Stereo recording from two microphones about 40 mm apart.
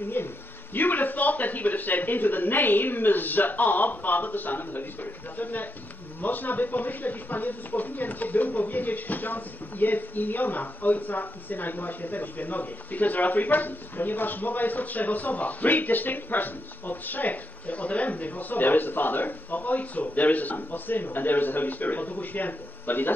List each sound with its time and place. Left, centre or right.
0.2 s speech: left
0.7 s speech: left